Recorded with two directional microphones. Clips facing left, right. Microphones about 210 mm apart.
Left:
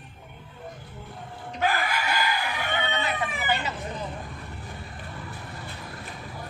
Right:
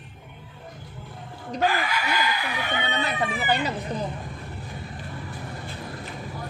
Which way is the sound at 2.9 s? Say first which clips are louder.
Right 2 dB; 35° right (ahead or behind).